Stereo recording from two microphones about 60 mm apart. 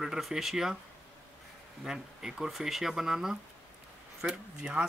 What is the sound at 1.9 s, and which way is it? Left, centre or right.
Speech, centre.